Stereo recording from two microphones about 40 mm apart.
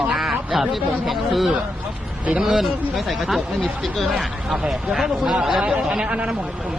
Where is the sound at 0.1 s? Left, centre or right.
Centre.